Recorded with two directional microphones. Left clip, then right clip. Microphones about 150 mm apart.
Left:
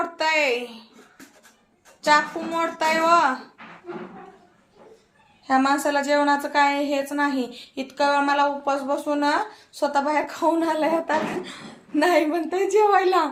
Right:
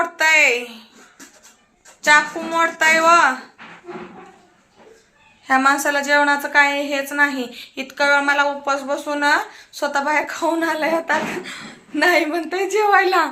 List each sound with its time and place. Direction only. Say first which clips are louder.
0.0 s a sound: right 7 dB; 10° left (ahead or behind)
2.0 s a woman's voice: right 5 dB; 10° left (ahead or behind)
5.5 s a woman's voice: right 4 dB; 10° left (ahead or behind)